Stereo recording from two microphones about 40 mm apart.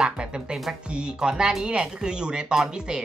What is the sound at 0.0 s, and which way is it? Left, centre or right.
Music, right.